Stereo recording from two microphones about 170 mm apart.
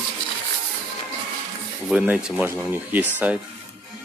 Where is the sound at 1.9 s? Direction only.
5° right (ahead or behind).